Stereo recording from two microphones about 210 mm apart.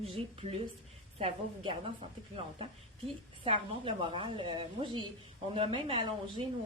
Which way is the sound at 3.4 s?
25° right (ahead or behind).